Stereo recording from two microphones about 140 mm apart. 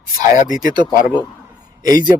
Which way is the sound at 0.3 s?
65° left (ahead or behind).